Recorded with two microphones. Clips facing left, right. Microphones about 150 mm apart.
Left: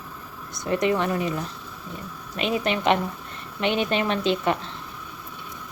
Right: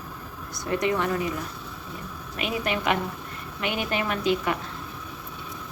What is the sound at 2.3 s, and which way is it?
A woman's voice, 25° left (ahead or behind).